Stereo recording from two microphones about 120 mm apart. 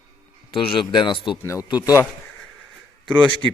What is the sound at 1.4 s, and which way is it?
Speech, 25° left (ahead or behind).